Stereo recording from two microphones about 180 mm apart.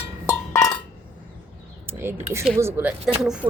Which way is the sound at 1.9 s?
10° right (ahead or behind).